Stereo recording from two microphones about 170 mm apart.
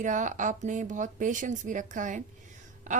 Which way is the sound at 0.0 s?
45° right (ahead or behind).